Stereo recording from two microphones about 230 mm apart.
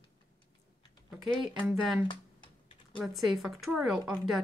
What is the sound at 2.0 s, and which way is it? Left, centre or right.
Typing, centre.